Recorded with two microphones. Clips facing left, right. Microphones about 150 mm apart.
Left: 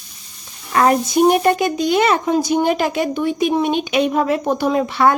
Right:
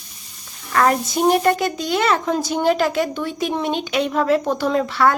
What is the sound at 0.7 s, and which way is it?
Speech, 20° left (ahead or behind).